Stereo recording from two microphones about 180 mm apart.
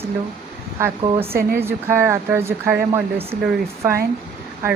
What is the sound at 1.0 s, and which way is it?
Speech, 30° right (ahead or behind).